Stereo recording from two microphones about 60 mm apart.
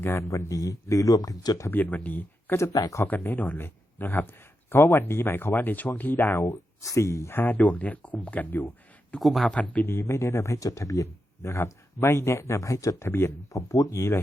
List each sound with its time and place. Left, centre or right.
0.0 s speech: left
0.3 s speech: left
1.7 s speech: left
2.7 s speech: left
3.1 s speech: left
6.8 s speech: left
7.3 s speech: left
9.2 s speech: centre
9.5 s speech: left
9.8 s speech: left
13.0 s speech: left